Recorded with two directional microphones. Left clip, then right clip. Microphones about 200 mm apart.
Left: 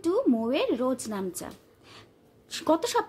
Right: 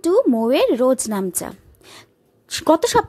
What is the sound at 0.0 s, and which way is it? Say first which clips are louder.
A woman's voice: right 9 dB; 35° right (ahead or behind).